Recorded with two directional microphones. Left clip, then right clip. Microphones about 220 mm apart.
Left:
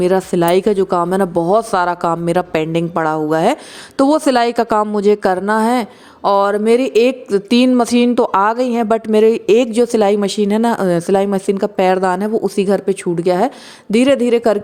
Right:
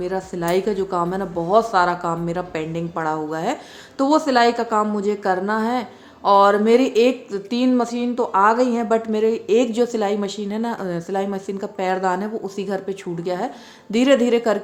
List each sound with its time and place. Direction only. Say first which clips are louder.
0.0 s speech: left 10 dB; 40° left (ahead or behind)